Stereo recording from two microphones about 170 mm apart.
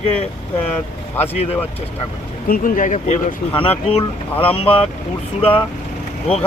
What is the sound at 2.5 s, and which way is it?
Speech, 55° left (ahead or behind).